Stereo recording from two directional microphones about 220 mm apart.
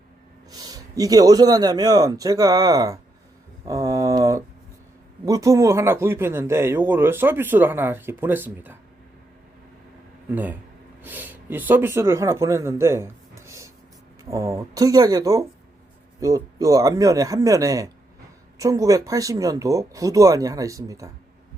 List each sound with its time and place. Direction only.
0.5 s speech: 15° right (ahead or behind)
3.7 s a sound: 15° right (ahead or behind)
5.2 s speech: 15° right (ahead or behind)
10.3 s speech: 10° right (ahead or behind)